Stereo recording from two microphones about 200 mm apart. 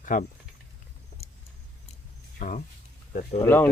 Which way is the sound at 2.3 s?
40° left (ahead or behind).